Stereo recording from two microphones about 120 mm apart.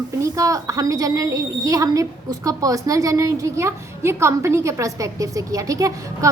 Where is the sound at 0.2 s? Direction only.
25° right (ahead or behind).